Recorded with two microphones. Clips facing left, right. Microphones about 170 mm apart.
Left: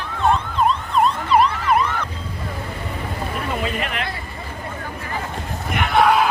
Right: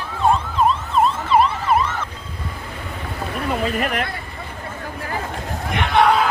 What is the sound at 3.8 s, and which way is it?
Hubbub, 45° right (ahead or behind).